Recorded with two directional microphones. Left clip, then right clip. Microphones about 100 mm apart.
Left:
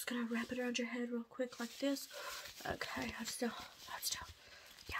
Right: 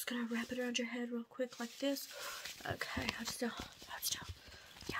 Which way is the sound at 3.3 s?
10° right (ahead or behind).